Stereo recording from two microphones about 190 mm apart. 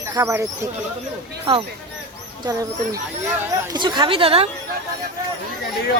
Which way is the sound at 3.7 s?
25° right (ahead or behind).